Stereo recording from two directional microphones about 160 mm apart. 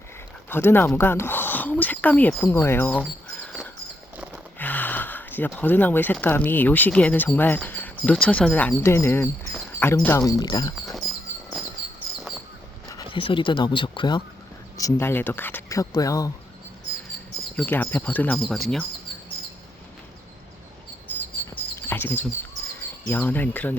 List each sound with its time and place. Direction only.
0.5 s speech: 15° left (ahead or behind)
4.5 s a sound: 10° left (ahead or behind)
5.5 s speech: 10° left (ahead or behind)
12.9 s speech: 30° left (ahead or behind)
14.8 s speech: 20° left (ahead or behind)
17.6 s speech: 10° left (ahead or behind)
21.8 s chirp: 15° left (ahead or behind)
23.0 s speech: 10° left (ahead or behind)